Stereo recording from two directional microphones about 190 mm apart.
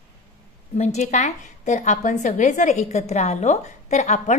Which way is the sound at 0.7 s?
35° left (ahead or behind).